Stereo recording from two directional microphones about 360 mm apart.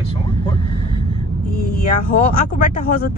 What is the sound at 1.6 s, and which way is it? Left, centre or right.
Speech, left.